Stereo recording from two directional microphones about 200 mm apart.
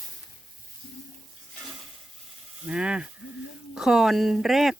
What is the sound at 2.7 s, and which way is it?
Speech, 5° right (ahead or behind).